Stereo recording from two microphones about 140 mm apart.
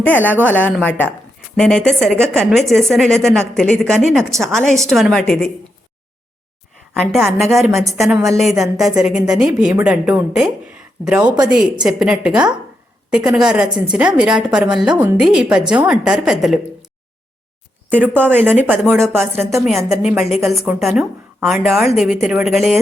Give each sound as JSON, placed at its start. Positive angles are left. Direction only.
{"t": 0.5, "sound": "a woman's voice", "side_deg": 10}
{"t": 6.9, "sound": "a woman's voice", "side_deg": 0}
{"t": 17.8, "sound": "speech", "side_deg": -15}
{"t": 18.9, "sound": "a woman's voice", "side_deg": 5}
{"t": 19.1, "sound": "speech", "side_deg": -15}
{"t": 19.5, "sound": "a woman's voice", "side_deg": 0}